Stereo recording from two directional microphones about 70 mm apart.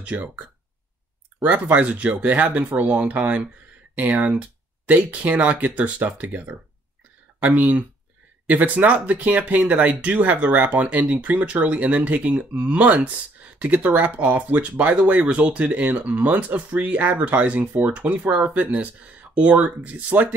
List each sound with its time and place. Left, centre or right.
0.0 s speech: right